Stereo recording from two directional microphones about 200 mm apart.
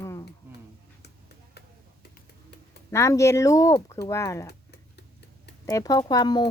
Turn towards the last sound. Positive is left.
turn(degrees=20)  # may be behind; listen again after turning